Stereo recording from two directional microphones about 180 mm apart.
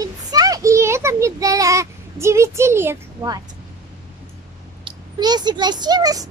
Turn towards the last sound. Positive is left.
turn(degrees=-20)  # may be behind; listen again after turning